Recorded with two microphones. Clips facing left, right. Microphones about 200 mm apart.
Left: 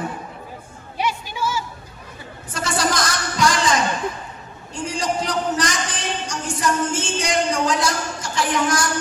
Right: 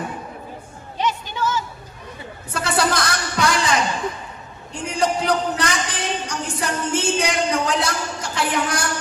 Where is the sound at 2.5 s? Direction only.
60° right (ahead or behind).